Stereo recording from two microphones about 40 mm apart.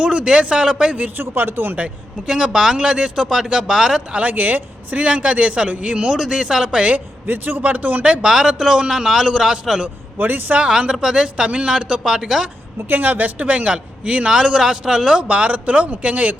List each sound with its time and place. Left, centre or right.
0.0 s speech: right
1.1 s speech: right
2.2 s a man's voice: centre
4.1 s speech: right
6.1 s a man's voice: centre
6.9 s a man's voice: right
7.6 s speech: right
8.2 s a man's voice: centre
10.2 s speech: right
10.6 s speech: right
12.9 s speech: right
13.4 s a man's voice: right; by 15.2 s centre
15.2 s speech: right